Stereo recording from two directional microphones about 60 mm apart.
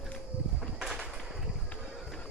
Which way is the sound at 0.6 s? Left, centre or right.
Centre.